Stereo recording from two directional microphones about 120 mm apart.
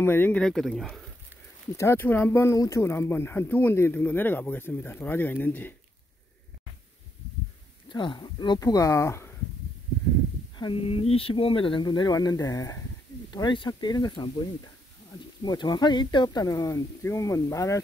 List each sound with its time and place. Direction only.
0.0 s speech: 15° left (ahead or behind)
0.4 s speech: 5° left (ahead or behind)
1.8 s speech: 20° left (ahead or behind)
2.5 s speech: 30° left (ahead or behind)
7.9 s speech: 40° left (ahead or behind); by 9.3 s 25° left (ahead or behind)
10.6 s speech: 45° left (ahead or behind)
15.4 s speech: 35° left (ahead or behind)